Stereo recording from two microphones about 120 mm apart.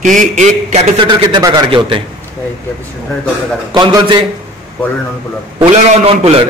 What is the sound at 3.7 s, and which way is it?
Speech, 35° right (ahead or behind).